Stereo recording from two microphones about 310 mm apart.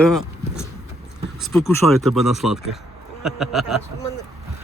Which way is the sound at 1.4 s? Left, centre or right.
Centre.